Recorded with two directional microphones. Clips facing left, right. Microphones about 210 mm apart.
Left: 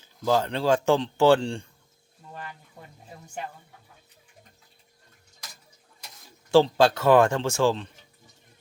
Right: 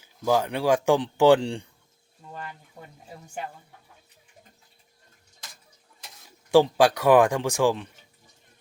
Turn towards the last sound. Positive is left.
turn(degrees=-15)  # may be behind; listen again after turning